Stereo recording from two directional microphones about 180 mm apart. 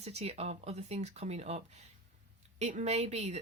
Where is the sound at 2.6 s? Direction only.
40° right (ahead or behind).